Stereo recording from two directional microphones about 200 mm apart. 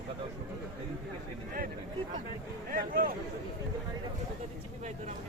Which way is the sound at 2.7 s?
45° right (ahead or behind).